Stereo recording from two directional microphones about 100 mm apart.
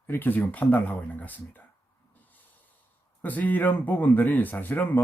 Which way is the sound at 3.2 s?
15° left (ahead or behind).